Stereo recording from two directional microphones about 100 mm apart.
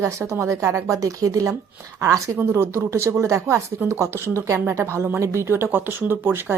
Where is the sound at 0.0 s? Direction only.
30° right (ahead or behind).